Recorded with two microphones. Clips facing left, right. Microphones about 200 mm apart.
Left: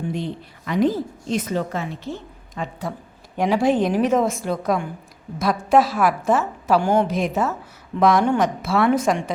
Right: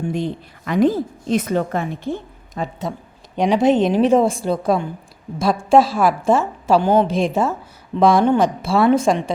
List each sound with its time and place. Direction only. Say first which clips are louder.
0.1 s a woman's voice: right 4 dB; 50° right (ahead or behind)
2.6 s a woman's voice: right 4 dB; 40° right (ahead or behind)
3.3 s a woman's voice: right 3 dB; 20° right (ahead or behind)